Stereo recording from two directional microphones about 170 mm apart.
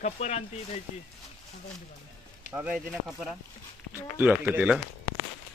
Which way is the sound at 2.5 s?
10° right (ahead or behind).